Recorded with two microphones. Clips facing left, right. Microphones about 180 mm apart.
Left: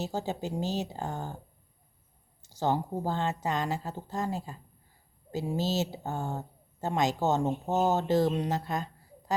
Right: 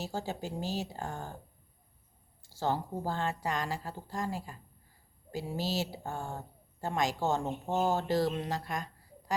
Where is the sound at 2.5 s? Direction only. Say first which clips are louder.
Left 4 dB; 20° left (ahead or behind).